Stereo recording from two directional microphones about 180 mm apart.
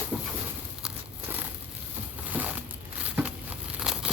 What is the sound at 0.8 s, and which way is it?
Crumpling, 5° right (ahead or behind).